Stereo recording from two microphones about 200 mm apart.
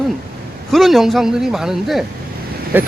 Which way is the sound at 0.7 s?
Centre (ahead or behind).